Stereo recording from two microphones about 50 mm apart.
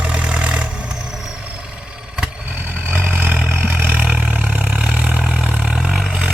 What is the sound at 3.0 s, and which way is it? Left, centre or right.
Vehicle, right.